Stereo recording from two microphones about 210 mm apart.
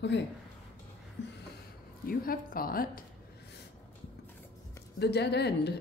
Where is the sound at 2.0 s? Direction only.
45° left (ahead or behind).